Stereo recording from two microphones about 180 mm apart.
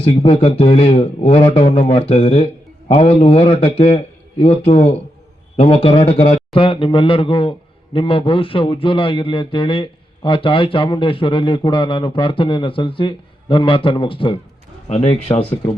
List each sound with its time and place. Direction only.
0.0 s a man's voice: 30° left (ahead or behind)